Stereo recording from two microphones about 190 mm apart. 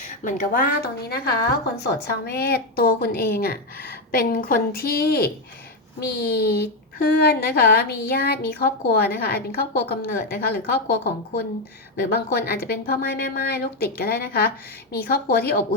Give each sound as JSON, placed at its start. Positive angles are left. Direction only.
{"t": 0.1, "sound": "a woman's voice", "side_deg": 45}